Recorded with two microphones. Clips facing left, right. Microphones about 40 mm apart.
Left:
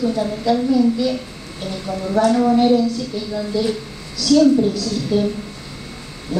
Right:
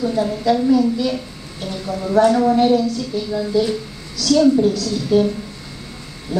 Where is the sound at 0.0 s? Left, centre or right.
Centre.